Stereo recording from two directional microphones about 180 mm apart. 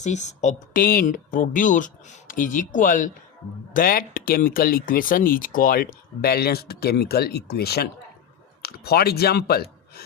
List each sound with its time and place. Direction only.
0.0 s speech: 40° left (ahead or behind); by 10.0 s 60° left (ahead or behind)